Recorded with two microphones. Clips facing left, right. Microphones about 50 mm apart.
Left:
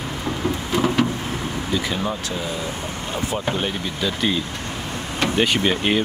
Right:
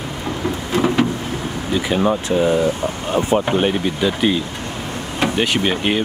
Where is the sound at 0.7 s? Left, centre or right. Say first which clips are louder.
Right 3 dB; right.